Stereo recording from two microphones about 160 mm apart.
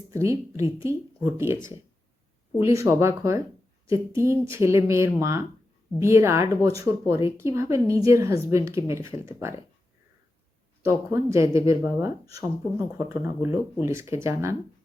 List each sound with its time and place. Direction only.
0.1 s speech: 20° right (ahead or behind)
2.6 s speech: 20° right (ahead or behind)
10.8 s speech: 15° right (ahead or behind)